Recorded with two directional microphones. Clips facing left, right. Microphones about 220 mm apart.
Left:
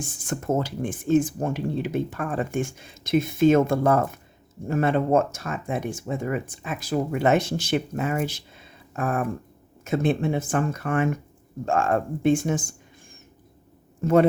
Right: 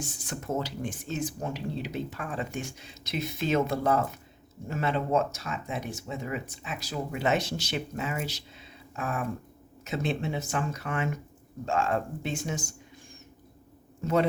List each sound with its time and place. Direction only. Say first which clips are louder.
0.0 s speech: left 6 dB; 50° left (ahead or behind)
14.0 s speech: left 7 dB; 50° left (ahead or behind)